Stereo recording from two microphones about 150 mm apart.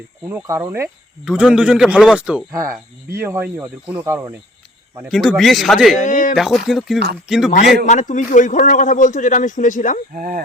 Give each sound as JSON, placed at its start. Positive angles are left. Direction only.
{"t": 0.3, "sound": "speech", "side_deg": -20}
{"t": 1.2, "sound": "a man's voice", "side_deg": -5}
{"t": 5.0, "sound": "a man's voice", "side_deg": 5}
{"t": 6.0, "sound": "a man's voice", "side_deg": 55}
{"t": 6.3, "sound": "a man's voice", "side_deg": 0}
{"t": 7.9, "sound": "a man's voice", "side_deg": 55}
{"t": 10.2, "sound": "speech", "side_deg": -70}